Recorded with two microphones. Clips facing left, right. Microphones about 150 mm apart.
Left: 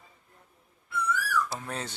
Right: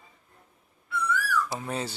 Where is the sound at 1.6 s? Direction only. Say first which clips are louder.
Right 4 dB; 10° right (ahead or behind).